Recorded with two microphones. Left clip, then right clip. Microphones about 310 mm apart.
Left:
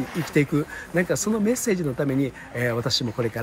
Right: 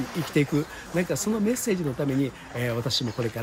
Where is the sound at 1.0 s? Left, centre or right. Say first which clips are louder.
Left 3 dB; centre.